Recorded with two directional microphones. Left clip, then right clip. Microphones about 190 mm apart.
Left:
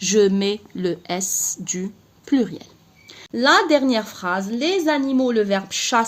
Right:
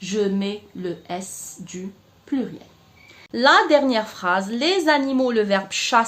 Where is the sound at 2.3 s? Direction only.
50° left (ahead or behind).